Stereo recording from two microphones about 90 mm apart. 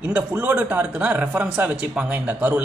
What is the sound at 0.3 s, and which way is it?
Speech, 25° right (ahead or behind).